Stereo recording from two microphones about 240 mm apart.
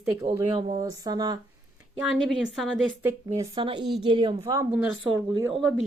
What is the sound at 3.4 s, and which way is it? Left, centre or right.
Speech, centre.